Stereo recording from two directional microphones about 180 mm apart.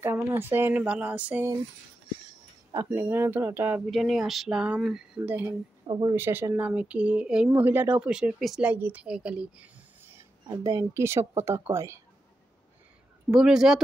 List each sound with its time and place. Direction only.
0.0 s speech: 10° right (ahead or behind)
2.7 s speech: 15° right (ahead or behind)
10.5 s speech: 15° right (ahead or behind)
13.3 s speech: centre (ahead or behind)